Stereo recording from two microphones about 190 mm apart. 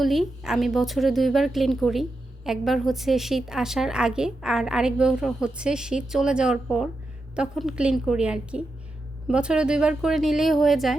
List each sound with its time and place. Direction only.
0.0 s a woman's voice: centre (ahead or behind)